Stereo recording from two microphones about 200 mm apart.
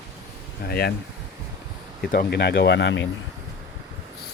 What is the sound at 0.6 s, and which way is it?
Speech, 50° left (ahead or behind).